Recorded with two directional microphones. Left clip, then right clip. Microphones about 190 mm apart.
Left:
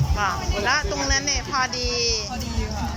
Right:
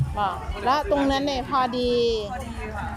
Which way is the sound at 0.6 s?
25° right (ahead or behind).